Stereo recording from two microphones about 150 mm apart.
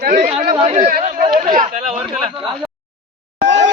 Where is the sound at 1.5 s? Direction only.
45° right (ahead or behind).